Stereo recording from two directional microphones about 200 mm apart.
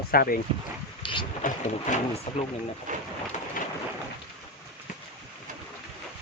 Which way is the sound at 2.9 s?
40° right (ahead or behind).